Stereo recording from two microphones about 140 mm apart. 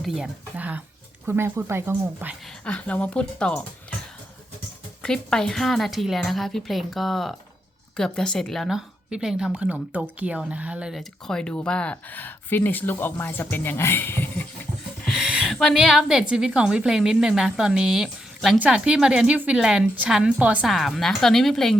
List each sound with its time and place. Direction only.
0.0 s speech: 5° right (ahead or behind)
2.6 s speech: 10° left (ahead or behind)
5.0 s a woman's voice: 5° left (ahead or behind)
15.0 s a woman's voice: centre (ahead or behind)